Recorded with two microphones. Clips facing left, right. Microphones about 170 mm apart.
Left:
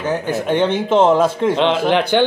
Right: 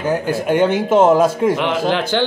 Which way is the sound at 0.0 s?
10° right (ahead or behind).